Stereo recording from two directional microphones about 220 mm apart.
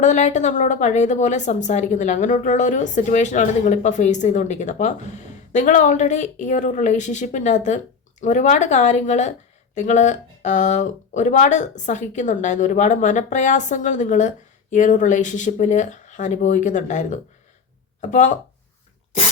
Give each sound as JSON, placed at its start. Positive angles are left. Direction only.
{"t": 0.0, "sound": "a woman's voice", "side_deg": 35}